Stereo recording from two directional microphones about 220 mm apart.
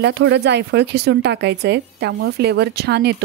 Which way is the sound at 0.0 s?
55° right (ahead or behind).